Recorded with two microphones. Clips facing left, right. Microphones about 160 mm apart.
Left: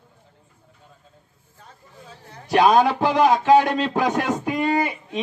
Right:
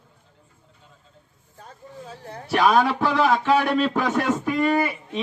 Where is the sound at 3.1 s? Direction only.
15° left (ahead or behind).